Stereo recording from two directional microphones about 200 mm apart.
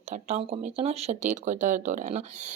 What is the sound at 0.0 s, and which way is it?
Speech, 35° right (ahead or behind).